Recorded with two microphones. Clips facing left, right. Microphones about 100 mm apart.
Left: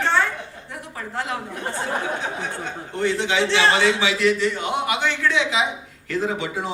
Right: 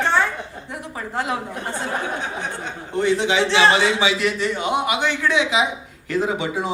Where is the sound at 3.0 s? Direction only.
15° right (ahead or behind).